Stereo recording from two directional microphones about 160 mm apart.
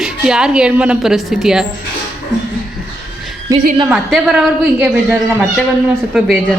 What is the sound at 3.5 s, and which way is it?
Speech, 20° right (ahead or behind).